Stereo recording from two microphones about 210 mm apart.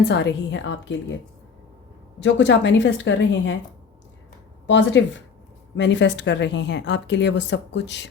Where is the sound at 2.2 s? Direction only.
60° left (ahead or behind).